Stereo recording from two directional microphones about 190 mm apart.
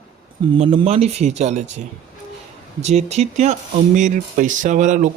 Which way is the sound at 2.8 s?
35° right (ahead or behind).